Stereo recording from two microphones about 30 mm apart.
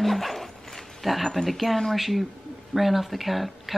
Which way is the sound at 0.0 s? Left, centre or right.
Centre.